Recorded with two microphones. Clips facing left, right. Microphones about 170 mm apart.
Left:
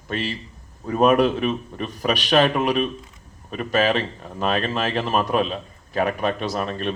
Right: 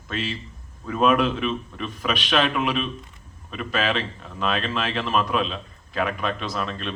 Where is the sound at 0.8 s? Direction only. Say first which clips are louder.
Left 3 dB; 40° left (ahead or behind).